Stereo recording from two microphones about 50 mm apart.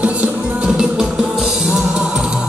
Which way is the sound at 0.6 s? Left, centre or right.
Centre.